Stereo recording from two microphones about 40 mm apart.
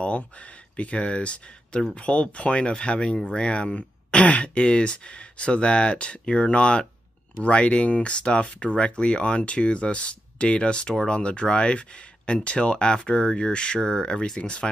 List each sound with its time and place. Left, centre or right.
0.0 s speech: left